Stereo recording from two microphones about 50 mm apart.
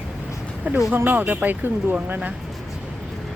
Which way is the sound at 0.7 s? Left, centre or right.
Right.